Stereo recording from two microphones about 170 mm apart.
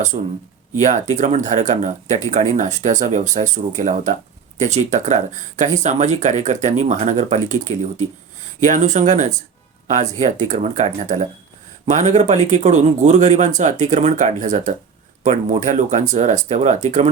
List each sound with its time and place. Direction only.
0.1 s speech: 35° right (ahead or behind)
0.8 s speech: 45° right (ahead or behind)